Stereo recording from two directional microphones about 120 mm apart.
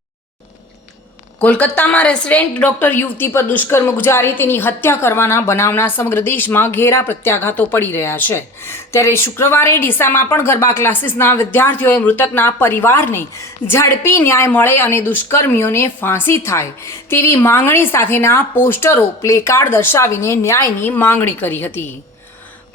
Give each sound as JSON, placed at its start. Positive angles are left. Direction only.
{"t": 1.4, "sound": "a woman's voice", "side_deg": 10}